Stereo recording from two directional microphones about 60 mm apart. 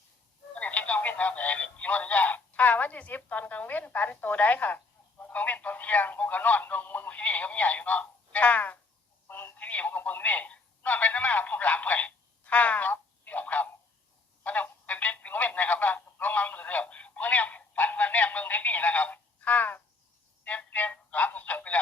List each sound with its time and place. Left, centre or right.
0.5 s telephone: left
9.2 s telephone: left
20.4 s music: left